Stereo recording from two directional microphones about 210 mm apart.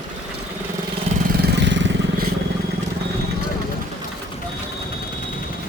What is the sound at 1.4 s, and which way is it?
Vehicle, 55° right (ahead or behind).